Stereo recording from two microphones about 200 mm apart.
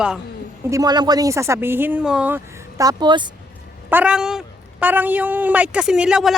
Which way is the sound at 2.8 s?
20° right (ahead or behind).